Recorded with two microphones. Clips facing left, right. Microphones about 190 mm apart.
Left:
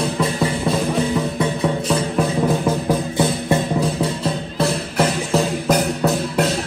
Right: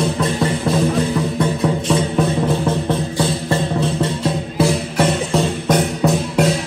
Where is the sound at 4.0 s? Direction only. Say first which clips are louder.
Right 2 dB; centre (ahead or behind).